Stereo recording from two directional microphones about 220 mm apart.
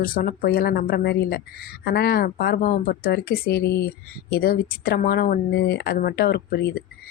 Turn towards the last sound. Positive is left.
turn(degrees=45)  # may be behind; listen again after turning